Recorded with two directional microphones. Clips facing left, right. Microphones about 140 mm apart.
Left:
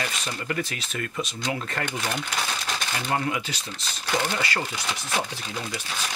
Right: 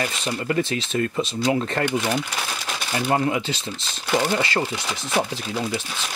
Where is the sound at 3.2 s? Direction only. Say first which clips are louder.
Right 5 dB; 25° right (ahead or behind).